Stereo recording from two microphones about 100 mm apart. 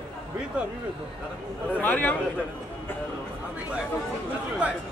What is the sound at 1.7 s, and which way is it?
Speech, 15° left (ahead or behind).